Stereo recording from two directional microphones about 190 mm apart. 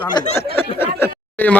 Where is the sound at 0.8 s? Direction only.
10° left (ahead or behind).